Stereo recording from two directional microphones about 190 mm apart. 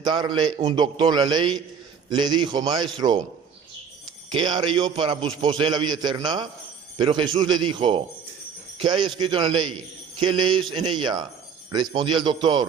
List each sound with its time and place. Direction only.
0.0 s a man's voice: 20° right (ahead or behind)
4.3 s a man's voice: 25° right (ahead or behind)